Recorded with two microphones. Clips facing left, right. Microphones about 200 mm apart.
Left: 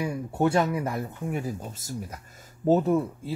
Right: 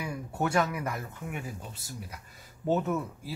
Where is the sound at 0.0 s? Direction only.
25° left (ahead or behind).